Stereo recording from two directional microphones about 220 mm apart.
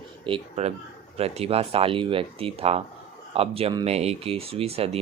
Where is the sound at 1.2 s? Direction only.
25° right (ahead or behind).